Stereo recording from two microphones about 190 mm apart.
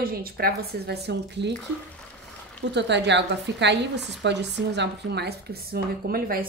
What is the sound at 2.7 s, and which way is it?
A woman's voice, 65° right (ahead or behind).